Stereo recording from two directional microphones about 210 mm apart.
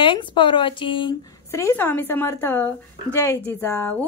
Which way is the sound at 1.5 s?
15° left (ahead or behind).